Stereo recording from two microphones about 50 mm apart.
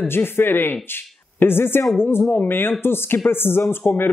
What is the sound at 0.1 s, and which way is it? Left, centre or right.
Speech, left.